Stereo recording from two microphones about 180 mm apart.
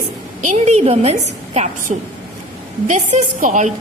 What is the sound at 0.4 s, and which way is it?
A woman's voice, 40° right (ahead or behind).